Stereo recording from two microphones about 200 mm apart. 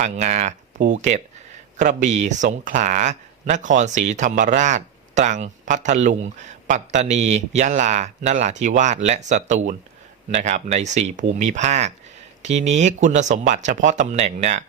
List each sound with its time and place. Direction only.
0.0 s speech: 35° right (ahead or behind)